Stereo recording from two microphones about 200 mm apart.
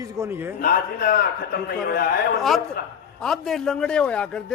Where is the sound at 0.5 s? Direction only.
50° left (ahead or behind).